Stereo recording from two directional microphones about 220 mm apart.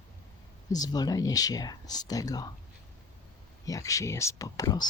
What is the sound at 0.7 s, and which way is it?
Speech, 15° left (ahead or behind).